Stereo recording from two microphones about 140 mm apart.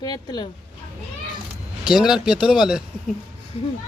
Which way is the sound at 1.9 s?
5° right (ahead or behind).